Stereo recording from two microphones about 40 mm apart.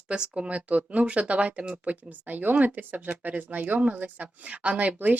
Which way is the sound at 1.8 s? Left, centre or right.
Right.